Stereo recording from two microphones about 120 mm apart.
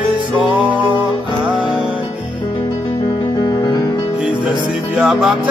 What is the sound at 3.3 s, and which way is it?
Music, 35° left (ahead or behind).